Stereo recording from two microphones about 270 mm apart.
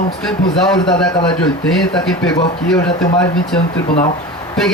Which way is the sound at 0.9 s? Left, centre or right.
Centre.